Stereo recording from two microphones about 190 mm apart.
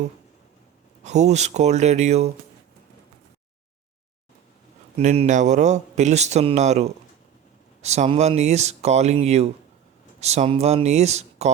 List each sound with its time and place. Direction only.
1.0 s a man's voice: 35° right (ahead or behind)
4.9 s a man's voice: 35° right (ahead or behind)